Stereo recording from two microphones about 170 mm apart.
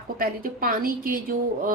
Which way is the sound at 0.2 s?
55° right (ahead or behind).